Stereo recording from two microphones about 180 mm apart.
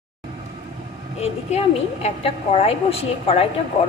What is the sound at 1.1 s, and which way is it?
A woman's voice, 35° left (ahead or behind).